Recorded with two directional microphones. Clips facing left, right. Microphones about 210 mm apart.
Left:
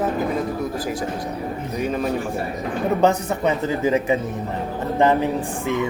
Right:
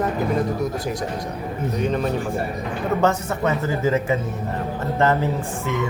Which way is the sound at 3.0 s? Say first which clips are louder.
Left 2 dB; 20° left (ahead or behind).